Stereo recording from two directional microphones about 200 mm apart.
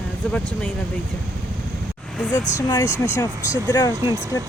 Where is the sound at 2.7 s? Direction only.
15° left (ahead or behind).